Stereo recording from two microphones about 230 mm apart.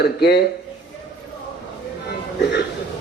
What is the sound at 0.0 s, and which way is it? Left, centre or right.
Speech, left.